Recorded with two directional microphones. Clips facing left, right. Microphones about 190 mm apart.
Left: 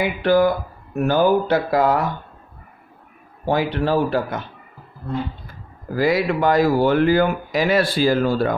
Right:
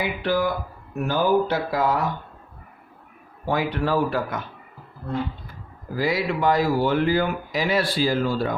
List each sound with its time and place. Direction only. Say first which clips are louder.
0.0 s speech: left 7 dB; 55° left (ahead or behind)
3.4 s speech: left 4 dB; 30° left (ahead or behind)
5.9 s speech: left 5 dB; 55° left (ahead or behind)